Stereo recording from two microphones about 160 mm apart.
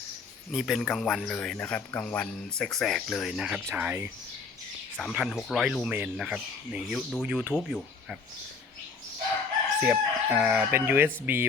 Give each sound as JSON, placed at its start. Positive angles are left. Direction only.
{"t": 0.5, "sound": "speech", "side_deg": 0}
{"t": 4.9, "sound": "speech", "side_deg": 0}
{"t": 9.8, "sound": "speech", "side_deg": -10}